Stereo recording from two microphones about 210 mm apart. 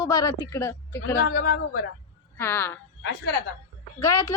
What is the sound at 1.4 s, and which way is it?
Speech, 45° left (ahead or behind).